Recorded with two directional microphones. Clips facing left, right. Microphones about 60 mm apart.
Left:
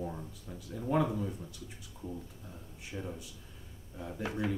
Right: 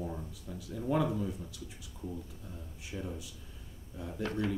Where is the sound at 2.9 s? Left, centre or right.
Centre.